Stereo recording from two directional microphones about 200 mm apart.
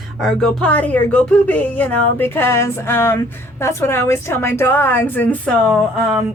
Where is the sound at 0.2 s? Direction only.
Centre (ahead or behind).